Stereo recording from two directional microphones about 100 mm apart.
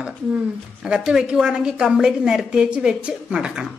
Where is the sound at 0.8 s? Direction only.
5° right (ahead or behind).